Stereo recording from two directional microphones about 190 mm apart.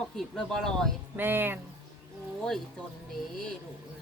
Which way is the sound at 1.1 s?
10° right (ahead or behind).